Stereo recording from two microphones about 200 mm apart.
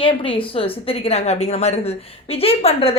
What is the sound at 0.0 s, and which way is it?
A woman's voice, 25° left (ahead or behind).